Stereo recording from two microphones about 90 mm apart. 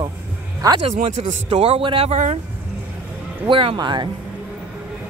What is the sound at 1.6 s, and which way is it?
Speech, 80° right.